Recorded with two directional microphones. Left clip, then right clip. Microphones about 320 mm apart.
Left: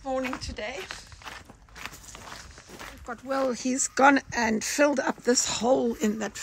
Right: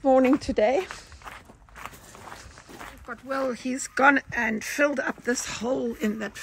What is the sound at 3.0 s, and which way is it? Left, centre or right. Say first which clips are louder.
Speech: left 1 dB; centre.